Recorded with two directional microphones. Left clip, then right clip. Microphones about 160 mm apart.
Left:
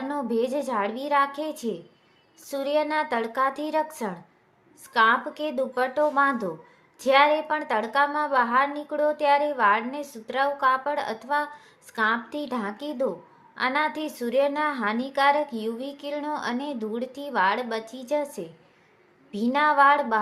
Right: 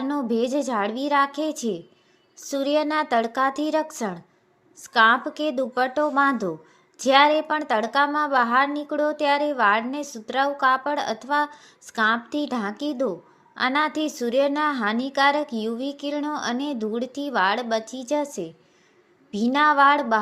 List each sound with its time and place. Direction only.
0.1 s a woman's voice: 25° right (ahead or behind)